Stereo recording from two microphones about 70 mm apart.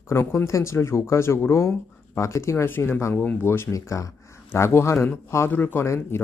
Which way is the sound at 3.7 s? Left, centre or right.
Left.